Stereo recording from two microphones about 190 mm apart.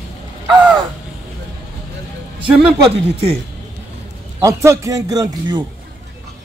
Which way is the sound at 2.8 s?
30° right (ahead or behind).